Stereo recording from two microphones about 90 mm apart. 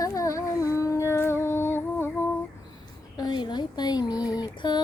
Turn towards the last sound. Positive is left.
turn(degrees=55)  # may be behind; listen again after turning